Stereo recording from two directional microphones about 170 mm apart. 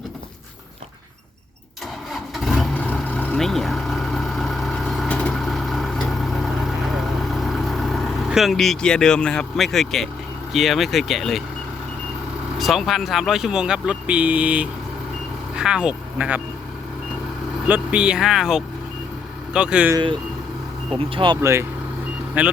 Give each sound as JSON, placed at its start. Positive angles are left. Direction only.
{"t": 2.4, "sound": "vehicle", "side_deg": 0}
{"t": 10.5, "sound": "speech", "side_deg": 0}
{"t": 12.5, "sound": "speech", "side_deg": 0}
{"t": 17.7, "sound": "speech", "side_deg": -5}
{"t": 20.9, "sound": "speech", "side_deg": -30}
{"t": 21.4, "sound": "speech", "side_deg": -15}